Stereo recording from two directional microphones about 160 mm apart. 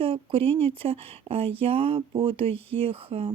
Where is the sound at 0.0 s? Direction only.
35° right (ahead or behind).